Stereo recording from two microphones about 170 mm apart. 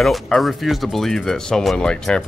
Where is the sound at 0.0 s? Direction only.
Centre (ahead or behind).